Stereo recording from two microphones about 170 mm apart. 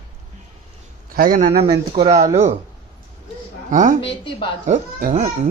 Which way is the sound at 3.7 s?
50° right (ahead or behind).